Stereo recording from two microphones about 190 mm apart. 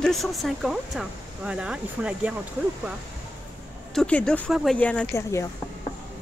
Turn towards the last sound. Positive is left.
turn(degrees=10)  # may be behind; listen again after turning